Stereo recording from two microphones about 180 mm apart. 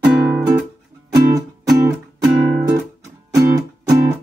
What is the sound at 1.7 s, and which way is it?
Music, 20° right (ahead or behind).